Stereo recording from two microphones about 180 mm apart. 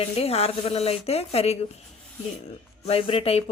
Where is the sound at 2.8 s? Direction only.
30° left (ahead or behind).